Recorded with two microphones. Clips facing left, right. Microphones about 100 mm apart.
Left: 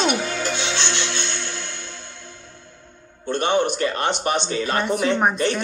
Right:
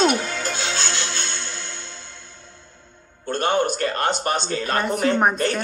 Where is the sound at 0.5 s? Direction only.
45° right (ahead or behind).